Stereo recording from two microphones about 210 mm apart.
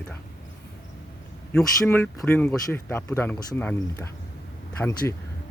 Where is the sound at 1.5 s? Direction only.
10° left (ahead or behind).